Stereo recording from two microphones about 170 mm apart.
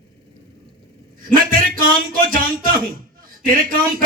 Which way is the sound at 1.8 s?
55° right (ahead or behind).